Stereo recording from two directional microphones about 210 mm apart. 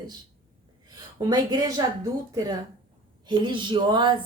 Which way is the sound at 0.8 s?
20° right (ahead or behind).